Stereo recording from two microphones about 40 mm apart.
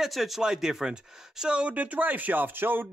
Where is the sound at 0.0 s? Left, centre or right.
Centre.